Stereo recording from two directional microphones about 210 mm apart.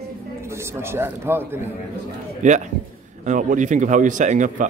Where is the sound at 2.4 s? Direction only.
35° right (ahead or behind).